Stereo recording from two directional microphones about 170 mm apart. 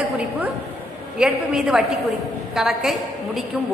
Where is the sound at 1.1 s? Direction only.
5° right (ahead or behind).